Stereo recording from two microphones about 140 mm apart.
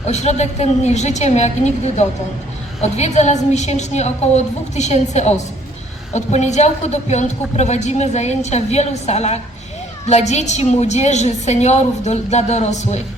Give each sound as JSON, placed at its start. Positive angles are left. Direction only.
{"t": 0.1, "sound": "a woman's voice", "side_deg": 55}